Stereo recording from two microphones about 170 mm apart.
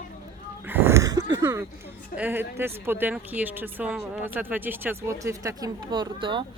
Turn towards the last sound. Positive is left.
turn(degrees=-30)  # may be behind; listen again after turning